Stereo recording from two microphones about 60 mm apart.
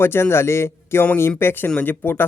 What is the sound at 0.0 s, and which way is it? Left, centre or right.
Speech, left.